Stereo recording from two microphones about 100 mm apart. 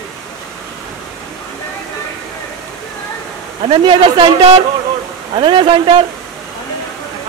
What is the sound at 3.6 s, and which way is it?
Speech, 65° right (ahead or behind).